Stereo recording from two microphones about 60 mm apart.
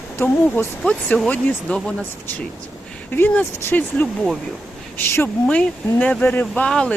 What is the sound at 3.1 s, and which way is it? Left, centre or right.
Speech, left.